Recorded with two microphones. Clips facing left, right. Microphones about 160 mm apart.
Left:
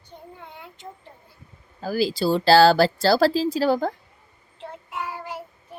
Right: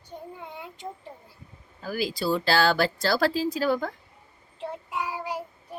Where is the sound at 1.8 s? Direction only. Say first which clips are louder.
Left 6 dB; 35° left (ahead or behind).